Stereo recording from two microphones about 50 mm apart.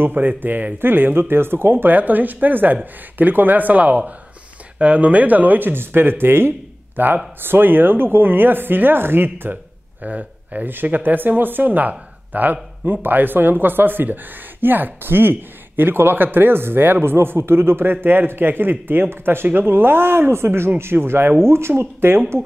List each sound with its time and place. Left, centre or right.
0.0 s speech: right
7.0 s speech: right
10.0 s speech: right